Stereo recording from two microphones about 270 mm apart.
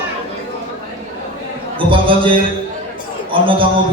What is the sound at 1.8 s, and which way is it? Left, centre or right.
A man's voice, centre.